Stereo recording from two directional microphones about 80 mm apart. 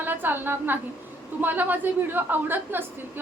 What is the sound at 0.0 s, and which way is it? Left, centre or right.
A woman's voice, right.